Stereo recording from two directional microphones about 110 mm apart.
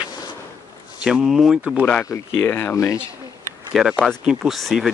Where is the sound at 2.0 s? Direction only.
20° left (ahead or behind).